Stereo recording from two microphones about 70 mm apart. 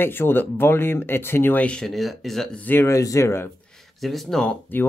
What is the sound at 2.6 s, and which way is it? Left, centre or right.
Speech, left.